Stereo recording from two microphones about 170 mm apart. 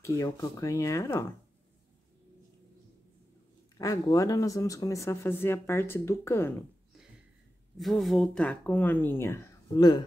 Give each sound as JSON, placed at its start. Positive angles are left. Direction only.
{"t": 0.0, "sound": "speech", "side_deg": 20}
{"t": 3.7, "sound": "speech", "side_deg": 20}
{"t": 7.7, "sound": "speech", "side_deg": 0}